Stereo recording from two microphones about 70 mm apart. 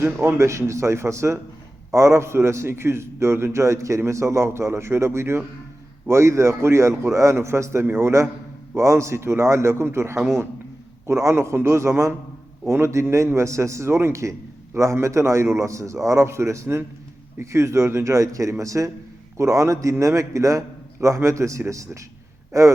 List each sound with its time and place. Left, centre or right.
0.0 s a man's voice: right